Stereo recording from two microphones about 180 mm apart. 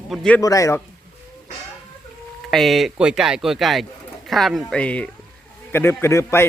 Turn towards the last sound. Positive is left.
turn(degrees=15)  # may be behind; listen again after turning